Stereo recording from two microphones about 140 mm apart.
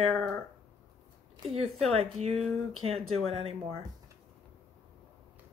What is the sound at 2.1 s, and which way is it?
Speech, 50° right (ahead or behind).